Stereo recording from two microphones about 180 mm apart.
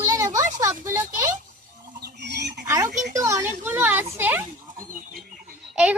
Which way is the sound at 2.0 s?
70° right (ahead or behind).